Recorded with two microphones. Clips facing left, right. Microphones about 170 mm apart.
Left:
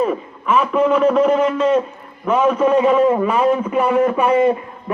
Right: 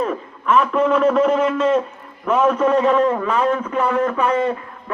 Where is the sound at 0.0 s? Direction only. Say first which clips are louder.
Left 3 dB; 5° left (ahead or behind).